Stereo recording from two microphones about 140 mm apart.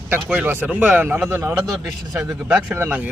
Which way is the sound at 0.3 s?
15° right (ahead or behind).